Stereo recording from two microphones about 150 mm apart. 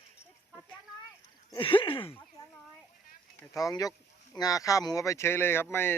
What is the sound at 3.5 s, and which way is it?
Speech, 25° left (ahead or behind).